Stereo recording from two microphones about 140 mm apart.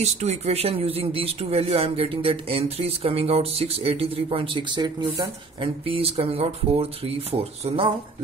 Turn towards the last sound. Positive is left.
turn(degrees=-40)  # may be behind; listen again after turning